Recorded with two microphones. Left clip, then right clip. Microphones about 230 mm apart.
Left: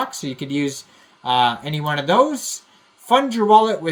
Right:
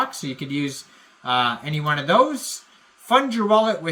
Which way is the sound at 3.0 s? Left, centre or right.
Centre.